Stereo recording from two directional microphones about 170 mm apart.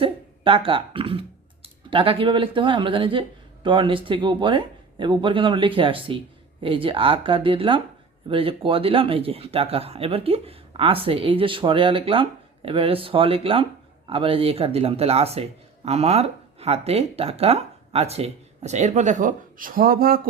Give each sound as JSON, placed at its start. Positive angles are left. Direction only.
{"t": 0.0, "sound": "speech", "side_deg": -30}